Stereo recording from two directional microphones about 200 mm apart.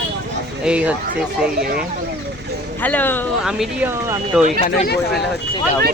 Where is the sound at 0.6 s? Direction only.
5° right (ahead or behind).